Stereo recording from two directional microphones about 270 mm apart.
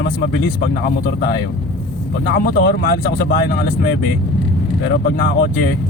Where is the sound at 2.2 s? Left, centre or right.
Left.